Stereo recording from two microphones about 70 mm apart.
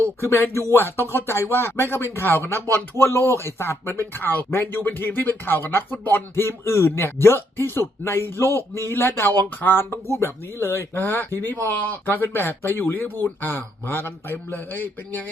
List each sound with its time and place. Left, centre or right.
0.2 s speech: left